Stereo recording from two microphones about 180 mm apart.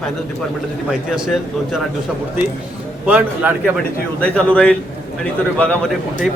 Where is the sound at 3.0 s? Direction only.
10° right (ahead or behind).